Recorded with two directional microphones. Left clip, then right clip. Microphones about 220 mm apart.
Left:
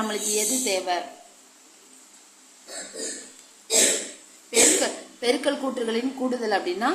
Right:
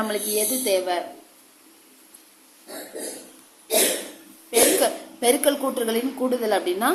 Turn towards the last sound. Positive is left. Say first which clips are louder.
# right 2 dB
turn(degrees=-10)  # may be behind; listen again after turning